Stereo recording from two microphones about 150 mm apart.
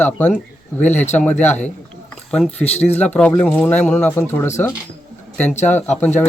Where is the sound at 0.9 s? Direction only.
50° left (ahead or behind).